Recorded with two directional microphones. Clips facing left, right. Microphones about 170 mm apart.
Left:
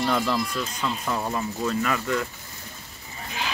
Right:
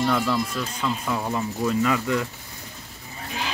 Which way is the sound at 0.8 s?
Centre (ahead or behind).